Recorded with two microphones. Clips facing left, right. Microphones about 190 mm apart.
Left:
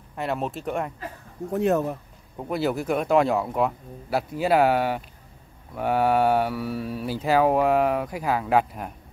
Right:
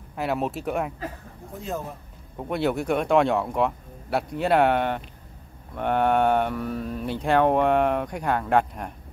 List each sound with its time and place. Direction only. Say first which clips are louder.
0.1 s speech: right 1 dB; centre (ahead or behind)
1.5 s speech: left 10 dB; 70° left (ahead or behind)
2.3 s speech: even; centre (ahead or behind)